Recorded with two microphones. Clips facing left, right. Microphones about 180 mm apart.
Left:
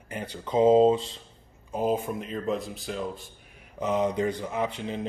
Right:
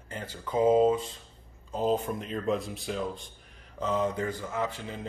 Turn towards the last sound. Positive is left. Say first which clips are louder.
# left 3 dB
turn(degrees=20)  # may be behind; listen again after turning